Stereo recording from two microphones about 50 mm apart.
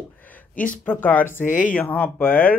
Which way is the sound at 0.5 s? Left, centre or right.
Left.